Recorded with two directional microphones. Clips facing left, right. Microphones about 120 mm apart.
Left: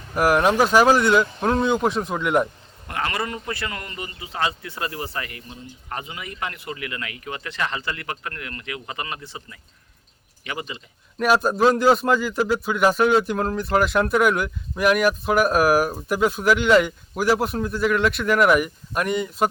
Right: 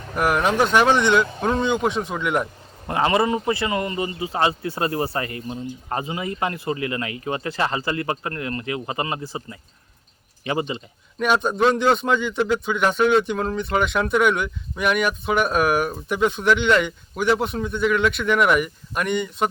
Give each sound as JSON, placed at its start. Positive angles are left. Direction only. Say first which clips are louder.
{"t": 0.2, "sound": "speech", "louder": "left 2 dB", "side_deg": 5}
{"t": 2.8, "sound": "a man's voice", "louder": "right 7 dB", "side_deg": -25}
{"t": 11.2, "sound": "speech", "louder": "left 1 dB", "side_deg": 5}